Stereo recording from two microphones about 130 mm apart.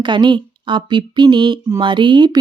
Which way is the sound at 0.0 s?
35° right (ahead or behind).